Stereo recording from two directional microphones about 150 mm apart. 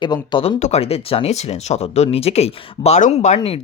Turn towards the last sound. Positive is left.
turn(degrees=40)  # may be behind; listen again after turning